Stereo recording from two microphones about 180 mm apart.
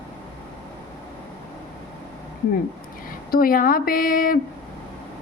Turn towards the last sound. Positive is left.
turn(degrees=55)  # may be behind; listen again after turning